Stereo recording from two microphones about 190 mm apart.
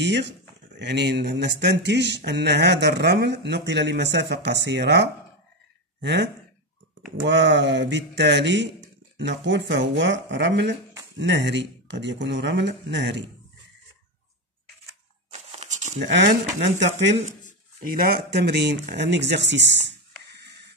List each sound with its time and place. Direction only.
0.0 s speech: 65° right (ahead or behind)
15.5 s a sound: 35° right (ahead or behind)
16.0 s speech: 65° right (ahead or behind)
16.7 s speech: 40° right (ahead or behind)
17.8 s speech: 50° right (ahead or behind); by 20.0 s 70° right (ahead or behind)